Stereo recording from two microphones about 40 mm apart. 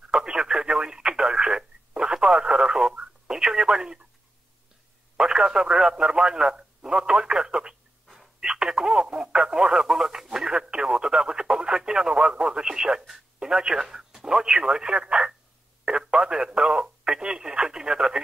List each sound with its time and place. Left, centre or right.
0.1 s radio: centre
5.1 s speech: centre